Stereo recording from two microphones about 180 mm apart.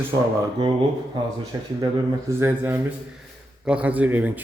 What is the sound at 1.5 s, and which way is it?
A man's voice, 20° right (ahead or behind).